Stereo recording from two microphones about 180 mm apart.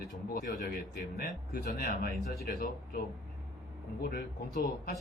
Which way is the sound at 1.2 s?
55° left (ahead or behind).